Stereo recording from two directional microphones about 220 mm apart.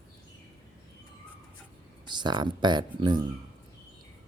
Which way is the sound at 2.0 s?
20° right (ahead or behind).